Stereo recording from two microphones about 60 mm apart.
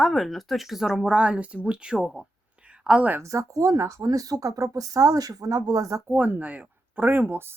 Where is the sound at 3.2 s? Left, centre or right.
Right.